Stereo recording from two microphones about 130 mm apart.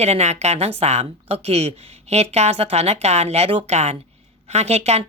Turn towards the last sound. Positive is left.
turn(degrees=-55)  # may be behind; listen again after turning